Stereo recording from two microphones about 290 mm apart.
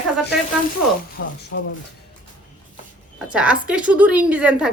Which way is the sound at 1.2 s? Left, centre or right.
Left.